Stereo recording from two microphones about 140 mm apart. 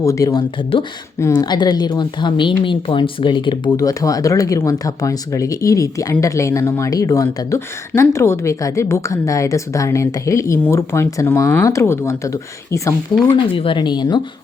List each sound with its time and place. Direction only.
0.0 s a woman's voice: 25° left (ahead or behind)
13.3 s speech: 40° left (ahead or behind)